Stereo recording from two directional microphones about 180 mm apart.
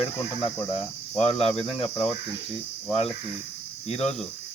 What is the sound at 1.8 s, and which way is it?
Speech, 35° left (ahead or behind).